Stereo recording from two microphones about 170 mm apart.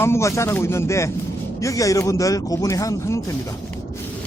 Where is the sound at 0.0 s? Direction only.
15° left (ahead or behind).